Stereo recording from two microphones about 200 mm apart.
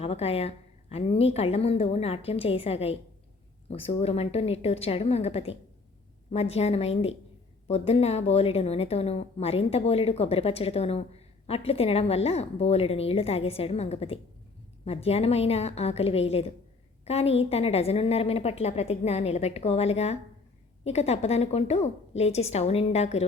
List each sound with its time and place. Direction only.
0.0 s a woman's voice: 30° left (ahead or behind)